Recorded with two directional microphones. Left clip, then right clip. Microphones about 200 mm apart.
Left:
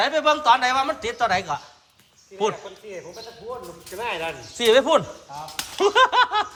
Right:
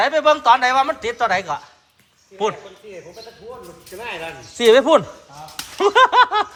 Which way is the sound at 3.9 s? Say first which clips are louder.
Left 2 dB; 20° left (ahead or behind).